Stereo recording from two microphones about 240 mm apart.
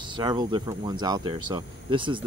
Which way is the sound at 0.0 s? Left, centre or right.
Centre.